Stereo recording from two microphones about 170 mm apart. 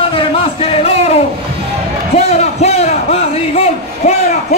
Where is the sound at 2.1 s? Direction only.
40° left (ahead or behind).